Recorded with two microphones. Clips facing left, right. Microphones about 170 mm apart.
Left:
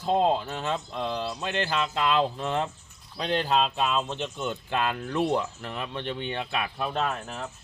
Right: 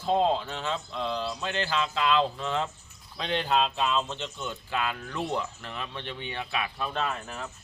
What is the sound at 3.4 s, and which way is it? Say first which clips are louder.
Speech: even; centre (ahead or behind).